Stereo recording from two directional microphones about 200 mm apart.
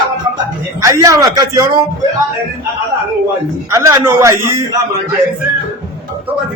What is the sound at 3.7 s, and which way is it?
A man's voice, 15° right (ahead or behind).